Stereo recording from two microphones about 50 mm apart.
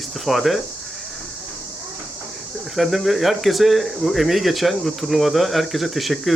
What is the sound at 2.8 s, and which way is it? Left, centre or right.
Speech, centre.